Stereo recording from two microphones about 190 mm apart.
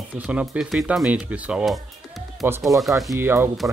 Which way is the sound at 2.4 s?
10° right (ahead or behind).